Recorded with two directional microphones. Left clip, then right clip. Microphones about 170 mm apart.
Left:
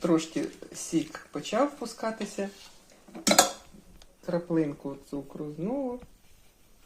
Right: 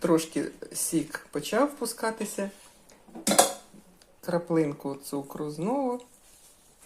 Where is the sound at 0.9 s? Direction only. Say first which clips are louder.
Even; 15° right (ahead or behind).